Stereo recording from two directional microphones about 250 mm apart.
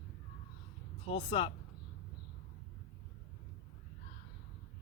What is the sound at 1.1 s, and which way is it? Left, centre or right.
Speech, left.